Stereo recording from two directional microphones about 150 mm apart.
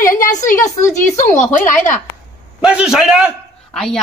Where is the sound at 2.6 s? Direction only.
5° right (ahead or behind).